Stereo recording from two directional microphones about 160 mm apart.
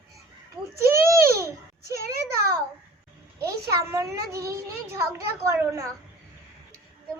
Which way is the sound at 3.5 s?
20° right (ahead or behind).